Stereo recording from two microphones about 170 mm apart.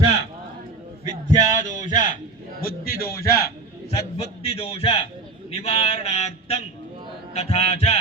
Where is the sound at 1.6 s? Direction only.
45° left (ahead or behind).